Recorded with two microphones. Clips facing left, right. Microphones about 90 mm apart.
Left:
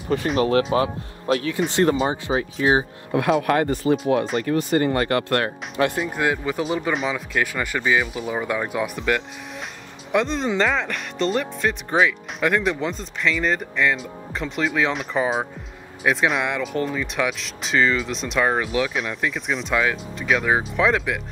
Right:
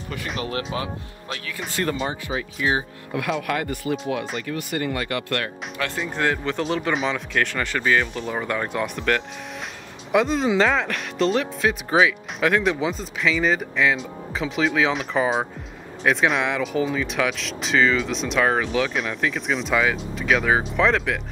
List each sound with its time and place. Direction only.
0.4 s speech: 40° left (ahead or behind)
5.9 s speech: 10° left (ahead or behind)